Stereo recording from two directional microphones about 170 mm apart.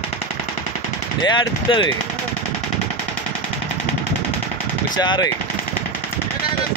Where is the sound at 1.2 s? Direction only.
25° left (ahead or behind).